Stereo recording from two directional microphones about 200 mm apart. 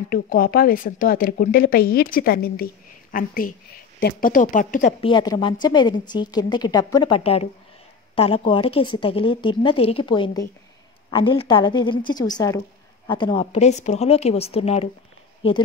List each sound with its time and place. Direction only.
0.1 s a woman's voice: 45° left (ahead or behind)
5.0 s a woman's voice: 20° left (ahead or behind)